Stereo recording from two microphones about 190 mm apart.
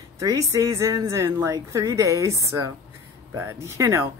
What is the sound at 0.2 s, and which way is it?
Speech, 15° right (ahead or behind).